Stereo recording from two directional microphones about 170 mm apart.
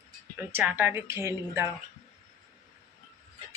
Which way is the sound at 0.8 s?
15° right (ahead or behind).